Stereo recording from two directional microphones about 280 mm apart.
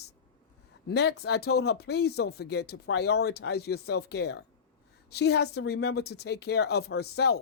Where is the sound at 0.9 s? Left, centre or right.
Left.